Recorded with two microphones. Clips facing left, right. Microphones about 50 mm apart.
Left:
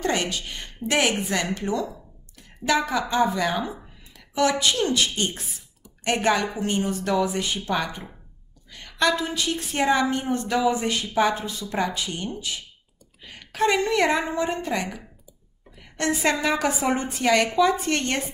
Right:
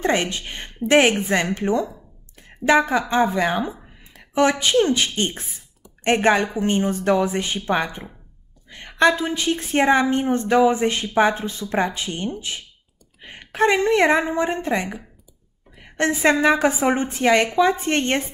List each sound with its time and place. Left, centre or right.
0.0 s a woman's voice: right